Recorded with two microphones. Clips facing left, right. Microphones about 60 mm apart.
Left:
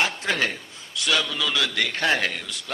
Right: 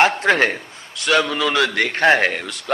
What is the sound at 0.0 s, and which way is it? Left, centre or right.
A man's voice, right.